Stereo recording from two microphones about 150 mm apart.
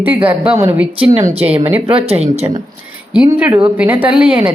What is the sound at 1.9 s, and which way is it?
Speech, 40° right (ahead or behind).